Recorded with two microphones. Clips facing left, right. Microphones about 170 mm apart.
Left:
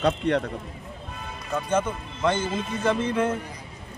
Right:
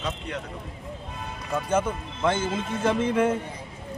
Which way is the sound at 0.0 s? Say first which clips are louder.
Left 10 dB; 65° left (ahead or behind).